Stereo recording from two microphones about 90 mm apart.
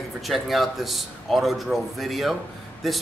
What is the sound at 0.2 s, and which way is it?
Speech, centre (ahead or behind).